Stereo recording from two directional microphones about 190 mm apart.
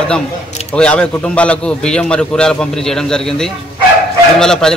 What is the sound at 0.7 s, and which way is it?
A man's voice, 5° left (ahead or behind).